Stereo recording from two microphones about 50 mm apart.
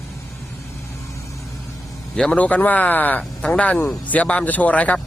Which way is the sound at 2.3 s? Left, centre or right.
Left.